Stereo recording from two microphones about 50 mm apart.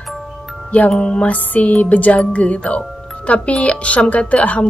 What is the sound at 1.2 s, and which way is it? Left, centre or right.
Speech, left.